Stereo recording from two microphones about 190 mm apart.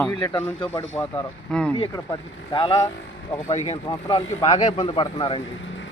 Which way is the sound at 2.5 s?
25° left (ahead or behind).